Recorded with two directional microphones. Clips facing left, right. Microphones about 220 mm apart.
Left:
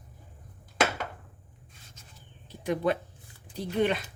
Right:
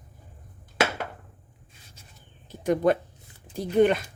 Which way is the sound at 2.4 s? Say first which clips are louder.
Right 5 dB; 45° right (ahead or behind).